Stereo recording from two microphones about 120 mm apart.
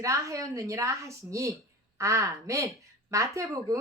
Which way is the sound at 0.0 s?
25° right (ahead or behind).